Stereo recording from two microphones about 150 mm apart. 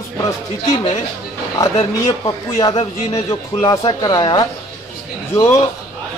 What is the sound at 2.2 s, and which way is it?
A man's voice, 25° left (ahead or behind).